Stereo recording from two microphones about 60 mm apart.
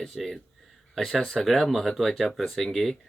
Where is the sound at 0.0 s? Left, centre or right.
Centre.